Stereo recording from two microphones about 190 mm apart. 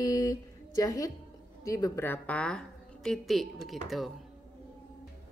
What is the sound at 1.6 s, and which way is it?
A woman's voice, 20° left (ahead or behind).